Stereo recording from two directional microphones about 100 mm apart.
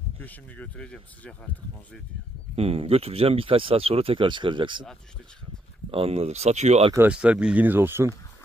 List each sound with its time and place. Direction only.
0.2 s speech: 15° left (ahead or behind)
2.5 s speech: 80° right; by 4.8 s 55° right (ahead or behind)
5.9 s speech: 75° right (ahead or behind); by 6.9 s 90° right
7.1 s speech: 10° right (ahead or behind)